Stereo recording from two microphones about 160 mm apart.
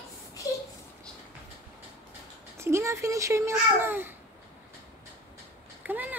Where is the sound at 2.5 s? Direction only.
15° right (ahead or behind).